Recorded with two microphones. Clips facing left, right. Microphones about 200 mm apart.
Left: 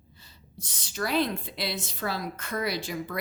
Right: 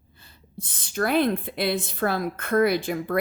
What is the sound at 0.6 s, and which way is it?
A woman's voice, 55° right (ahead or behind).